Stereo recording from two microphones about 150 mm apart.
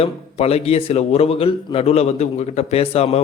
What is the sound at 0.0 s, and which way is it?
A man's voice, 40° left (ahead or behind).